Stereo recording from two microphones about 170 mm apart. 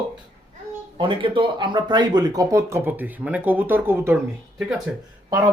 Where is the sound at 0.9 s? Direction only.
30° right (ahead or behind).